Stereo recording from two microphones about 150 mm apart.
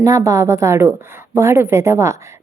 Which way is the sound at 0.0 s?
20° right (ahead or behind).